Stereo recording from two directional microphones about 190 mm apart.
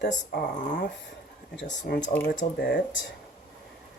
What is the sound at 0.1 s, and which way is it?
Speech, 40° left (ahead or behind).